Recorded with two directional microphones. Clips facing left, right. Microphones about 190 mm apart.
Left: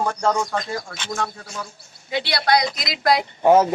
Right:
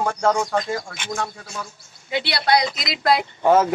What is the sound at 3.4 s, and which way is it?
Speech, 15° left (ahead or behind).